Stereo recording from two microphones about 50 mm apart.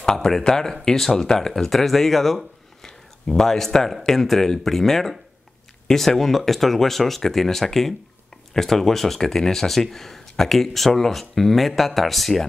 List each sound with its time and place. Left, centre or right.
0.0 s speech: centre